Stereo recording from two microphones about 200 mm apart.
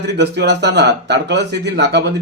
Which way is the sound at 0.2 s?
60° right (ahead or behind).